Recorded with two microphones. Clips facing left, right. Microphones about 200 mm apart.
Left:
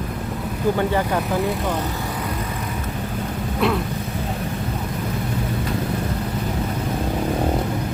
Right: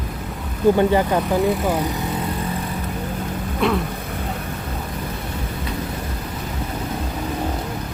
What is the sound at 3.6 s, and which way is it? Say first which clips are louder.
Speech: right 1 dB; centre (ahead or behind).